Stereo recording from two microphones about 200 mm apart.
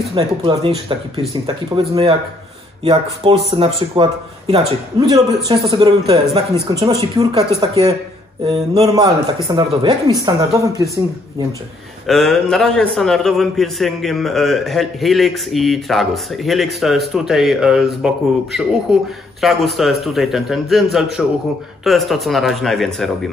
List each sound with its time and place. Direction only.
0.1 s speech: 25° right (ahead or behind)
8.5 s speech: 30° right (ahead or behind)
8.8 s speech: 20° right (ahead or behind)
12.1 s a man's voice: centre (ahead or behind)